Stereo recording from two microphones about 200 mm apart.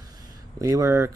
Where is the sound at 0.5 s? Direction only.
15° right (ahead or behind).